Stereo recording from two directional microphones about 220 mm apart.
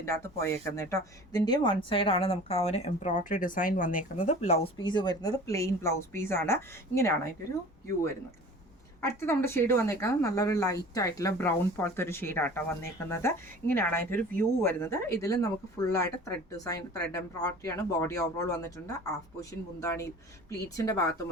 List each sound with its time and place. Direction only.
0.0 s speech: 10° left (ahead or behind)
9.0 s speech: 10° left (ahead or behind)